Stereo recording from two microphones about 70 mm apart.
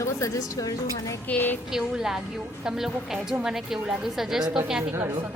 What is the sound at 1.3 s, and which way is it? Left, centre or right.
Speech, left.